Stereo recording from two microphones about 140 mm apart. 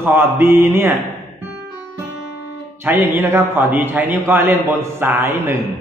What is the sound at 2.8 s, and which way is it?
A man's voice, 15° right (ahead or behind).